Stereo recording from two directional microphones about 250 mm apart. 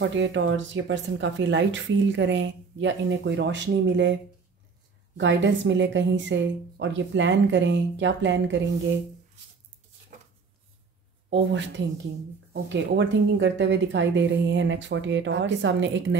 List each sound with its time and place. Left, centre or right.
0.0 s speech: right
5.1 s speech: right
11.2 s speech: right